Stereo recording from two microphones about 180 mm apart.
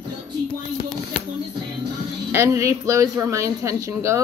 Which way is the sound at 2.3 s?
15° right (ahead or behind).